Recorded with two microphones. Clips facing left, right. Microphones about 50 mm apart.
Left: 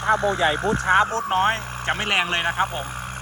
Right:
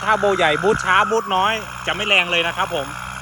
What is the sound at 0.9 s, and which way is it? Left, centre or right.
Speech, right.